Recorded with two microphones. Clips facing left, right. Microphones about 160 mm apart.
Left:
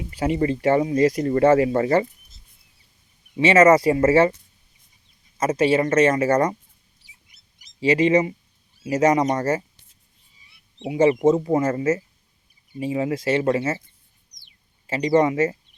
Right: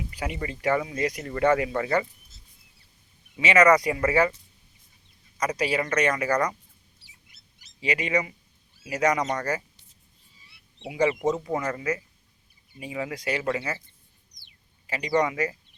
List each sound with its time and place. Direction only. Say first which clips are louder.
0.1 s speech: left 15 dB; 30° left (ahead or behind)
3.3 s speech: left 5 dB; 30° left (ahead or behind)
5.4 s speech: left 7 dB; 25° left (ahead or behind)
7.8 s speech: left 9 dB; 30° left (ahead or behind)
10.8 s speech: left 7 dB; 25° left (ahead or behind)
14.8 s speech: left 6 dB; 25° left (ahead or behind)